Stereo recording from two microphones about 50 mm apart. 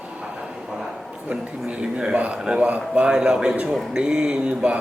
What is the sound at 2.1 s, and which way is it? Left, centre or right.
Speech, right.